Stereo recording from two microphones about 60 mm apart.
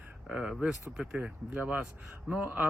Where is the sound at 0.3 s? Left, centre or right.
Centre.